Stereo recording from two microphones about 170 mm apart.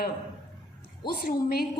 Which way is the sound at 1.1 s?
60° left (ahead or behind).